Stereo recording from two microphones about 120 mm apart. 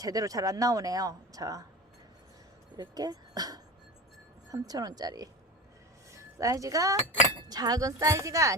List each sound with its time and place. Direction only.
0.0 s speech: 30° right (ahead or behind)
2.7 s speech: 35° right (ahead or behind)